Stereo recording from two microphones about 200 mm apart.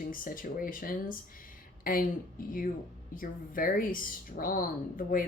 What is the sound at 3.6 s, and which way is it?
Speech, 45° left (ahead or behind).